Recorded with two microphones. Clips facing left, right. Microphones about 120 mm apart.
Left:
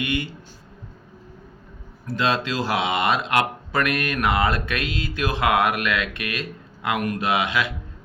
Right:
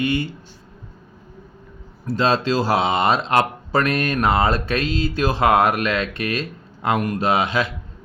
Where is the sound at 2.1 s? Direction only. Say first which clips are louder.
Right 4 dB; 30° right (ahead or behind).